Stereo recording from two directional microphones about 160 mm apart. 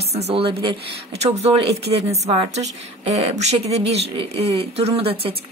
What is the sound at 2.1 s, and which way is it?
Speech, 45° right (ahead or behind).